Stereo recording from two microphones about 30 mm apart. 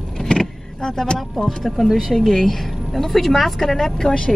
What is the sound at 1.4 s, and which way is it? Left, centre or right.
Speech, centre.